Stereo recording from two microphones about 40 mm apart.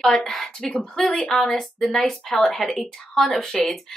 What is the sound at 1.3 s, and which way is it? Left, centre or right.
Speech, centre.